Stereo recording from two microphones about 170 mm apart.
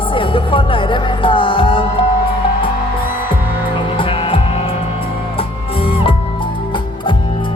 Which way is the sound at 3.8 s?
30° left (ahead or behind).